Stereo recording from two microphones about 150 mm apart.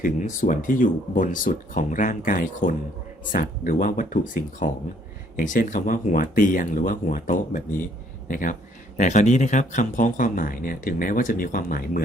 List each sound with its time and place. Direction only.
0.0 s speech: 60° left (ahead or behind)
9.0 s speech: 55° left (ahead or behind); by 12.0 s 70° left (ahead or behind)